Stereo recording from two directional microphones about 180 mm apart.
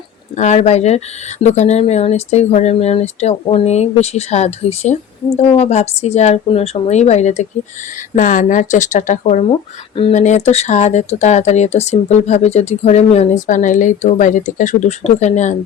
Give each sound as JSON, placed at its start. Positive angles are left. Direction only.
{"t": 0.3, "sound": "speech", "side_deg": 40}